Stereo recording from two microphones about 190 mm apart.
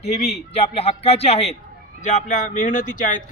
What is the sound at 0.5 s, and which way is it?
A man's voice, 30° left (ahead or behind).